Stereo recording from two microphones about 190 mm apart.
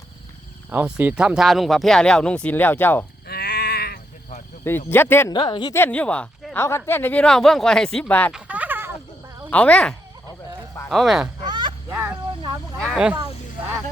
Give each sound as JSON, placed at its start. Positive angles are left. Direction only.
{"t": 0.7, "sound": "speech", "side_deg": -10}
{"t": 3.2, "sound": "sheep", "side_deg": 55}
{"t": 4.9, "sound": "speech", "side_deg": 10}
{"t": 5.3, "sound": "speech", "side_deg": 25}
{"t": 5.7, "sound": "speech", "side_deg": 10}
{"t": 8.3, "sound": "a sound", "side_deg": -5}
{"t": 9.5, "sound": "speech", "side_deg": 5}
{"t": 11.4, "sound": "a sound", "side_deg": -25}
{"t": 11.9, "sound": "a sound", "side_deg": -10}
{"t": 12.8, "sound": "snake", "side_deg": 0}